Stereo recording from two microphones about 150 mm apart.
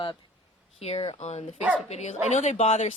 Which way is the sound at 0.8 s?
45° left (ahead or behind).